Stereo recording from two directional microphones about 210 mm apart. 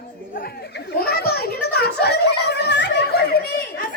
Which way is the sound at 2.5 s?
55° left (ahead or behind).